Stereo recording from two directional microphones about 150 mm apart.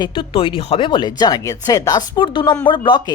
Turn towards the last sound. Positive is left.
turn(degrees=30)  # may be behind; listen again after turning